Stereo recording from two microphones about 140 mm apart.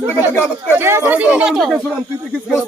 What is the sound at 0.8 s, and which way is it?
Speech, 15° right (ahead or behind).